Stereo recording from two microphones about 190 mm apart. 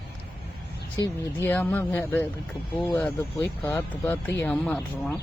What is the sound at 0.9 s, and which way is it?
Speech, 15° left (ahead or behind).